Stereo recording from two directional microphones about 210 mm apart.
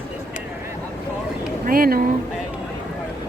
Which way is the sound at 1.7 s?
45° right (ahead or behind).